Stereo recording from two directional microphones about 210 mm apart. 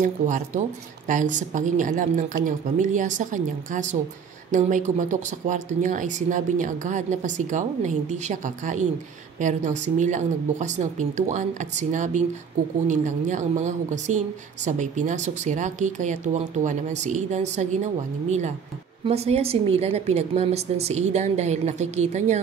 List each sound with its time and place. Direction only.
0.0 s a woman's voice: 35° right (ahead or behind)